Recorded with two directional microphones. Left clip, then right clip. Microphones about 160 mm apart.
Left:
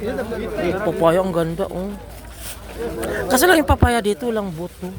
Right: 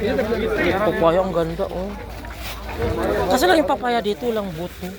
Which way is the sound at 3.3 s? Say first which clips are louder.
Left 3 dB; 75° left (ahead or behind).